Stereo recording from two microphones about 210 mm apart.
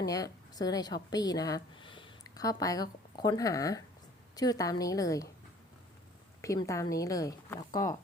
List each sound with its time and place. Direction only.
0.0 s speech: 15° left (ahead or behind)
6.4 s speech: 15° left (ahead or behind)